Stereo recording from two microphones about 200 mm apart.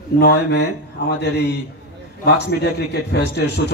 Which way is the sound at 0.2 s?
55° left (ahead or behind).